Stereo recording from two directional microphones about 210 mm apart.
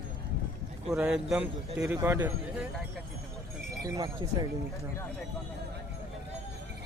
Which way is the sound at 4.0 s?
20° right (ahead or behind).